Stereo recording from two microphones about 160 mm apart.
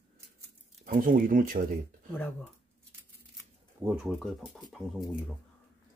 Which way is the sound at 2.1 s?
10° left (ahead or behind).